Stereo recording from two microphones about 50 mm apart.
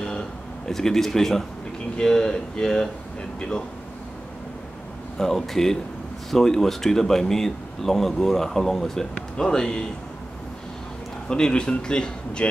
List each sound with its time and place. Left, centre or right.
0.0 s a sound: centre
2.0 s speech: centre
5.2 s speech: centre
11.2 s speech: centre